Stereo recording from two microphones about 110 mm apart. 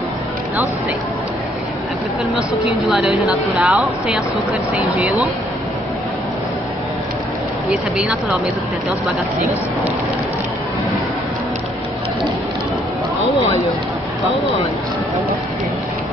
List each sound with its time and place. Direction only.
2.9 s speech: 5° right (ahead or behind)
4.7 s speech: 15° right (ahead or behind)
7.7 s speech: 5° right (ahead or behind)